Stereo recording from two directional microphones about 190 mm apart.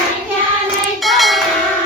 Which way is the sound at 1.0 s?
Centre (ahead or behind).